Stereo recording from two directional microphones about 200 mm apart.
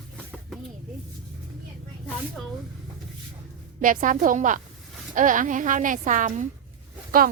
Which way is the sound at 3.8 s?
40° right (ahead or behind).